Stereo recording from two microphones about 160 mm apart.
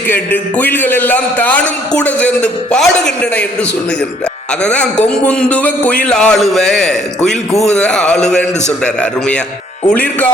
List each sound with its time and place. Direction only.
0.1 s a man's voice: 10° left (ahead or behind)
4.6 s a man's voice: 5° left (ahead or behind)